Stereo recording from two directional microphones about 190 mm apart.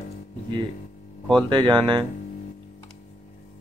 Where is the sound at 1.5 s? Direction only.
25° right (ahead or behind).